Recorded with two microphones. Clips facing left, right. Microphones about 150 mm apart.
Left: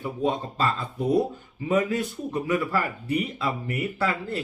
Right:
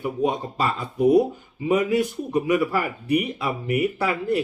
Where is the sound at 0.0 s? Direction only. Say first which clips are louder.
Right 3 dB; 15° right (ahead or behind).